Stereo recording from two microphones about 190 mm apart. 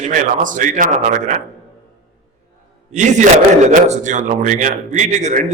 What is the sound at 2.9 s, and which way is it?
A man's voice, 40° right (ahead or behind).